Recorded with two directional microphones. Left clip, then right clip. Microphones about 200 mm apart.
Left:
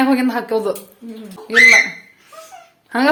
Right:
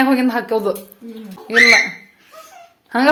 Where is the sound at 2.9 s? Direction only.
10° right (ahead or behind).